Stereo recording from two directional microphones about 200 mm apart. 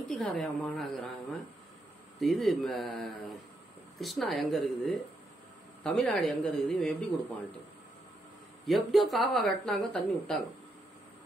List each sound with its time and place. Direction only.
0.1 s speech: 5° left (ahead or behind)
2.1 s a man's voice: centre (ahead or behind)
8.6 s speech: centre (ahead or behind)